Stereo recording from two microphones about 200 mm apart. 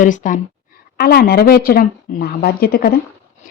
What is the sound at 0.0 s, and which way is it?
Speech, 40° left (ahead or behind).